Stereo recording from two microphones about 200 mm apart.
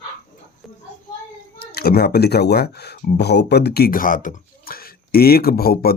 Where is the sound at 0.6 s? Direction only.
Centre (ahead or behind).